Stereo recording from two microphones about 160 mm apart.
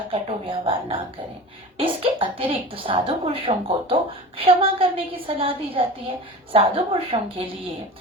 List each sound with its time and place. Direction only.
0.1 s a woman's voice: 35° right (ahead or behind)